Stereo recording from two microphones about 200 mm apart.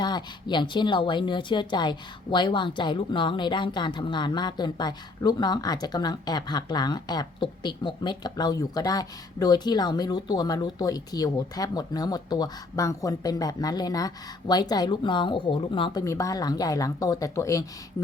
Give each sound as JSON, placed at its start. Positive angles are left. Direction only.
{"t": 0.0, "sound": "a woman's voice", "side_deg": 20}